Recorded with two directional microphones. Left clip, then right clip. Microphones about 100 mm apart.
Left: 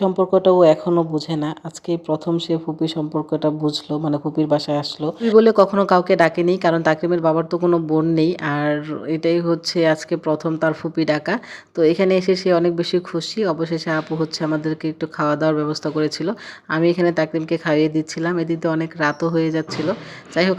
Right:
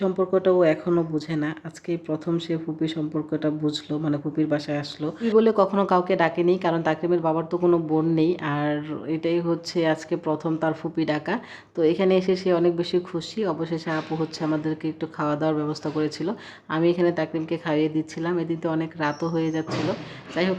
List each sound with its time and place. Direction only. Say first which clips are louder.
0.0 s speech: left 6 dB; 35° left (ahead or behind)